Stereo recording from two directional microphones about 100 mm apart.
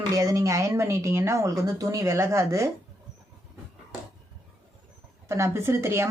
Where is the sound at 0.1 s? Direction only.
35° right (ahead or behind).